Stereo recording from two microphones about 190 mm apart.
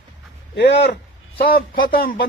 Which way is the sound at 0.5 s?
65° left (ahead or behind).